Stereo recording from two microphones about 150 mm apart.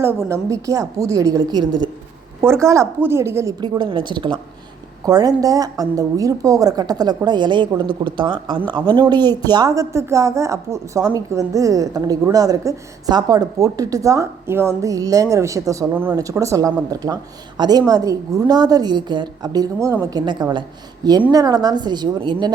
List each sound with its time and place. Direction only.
0.0 s speech: 20° right (ahead or behind)